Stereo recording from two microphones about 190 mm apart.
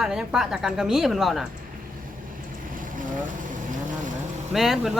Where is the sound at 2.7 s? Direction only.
45° right (ahead or behind).